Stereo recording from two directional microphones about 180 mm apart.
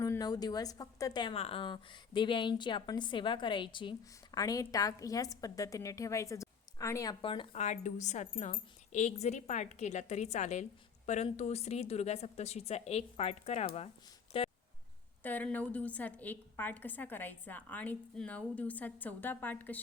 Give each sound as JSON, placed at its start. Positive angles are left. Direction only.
{"t": 0.0, "sound": "a woman's voice", "side_deg": 20}
{"t": 7.6, "sound": "a woman's voice", "side_deg": 40}
{"t": 15.2, "sound": "a woman's voice", "side_deg": 10}